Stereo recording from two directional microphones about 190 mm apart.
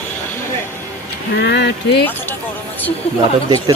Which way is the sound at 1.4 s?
65° left (ahead or behind).